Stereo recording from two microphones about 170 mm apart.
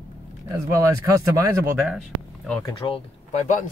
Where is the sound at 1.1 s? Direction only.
20° right (ahead or behind).